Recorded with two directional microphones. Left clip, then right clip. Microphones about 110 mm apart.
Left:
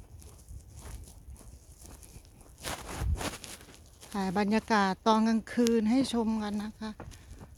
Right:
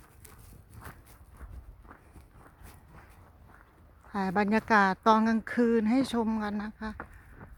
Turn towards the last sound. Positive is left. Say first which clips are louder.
# right 2 dB
turn(degrees=5)  # may be behind; listen again after turning